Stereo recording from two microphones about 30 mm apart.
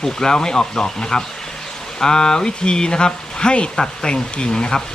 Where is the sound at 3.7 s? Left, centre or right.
Left.